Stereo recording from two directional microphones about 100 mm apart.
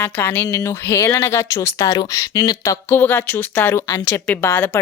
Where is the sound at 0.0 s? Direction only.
20° left (ahead or behind); by 2.7 s 40° left (ahead or behind).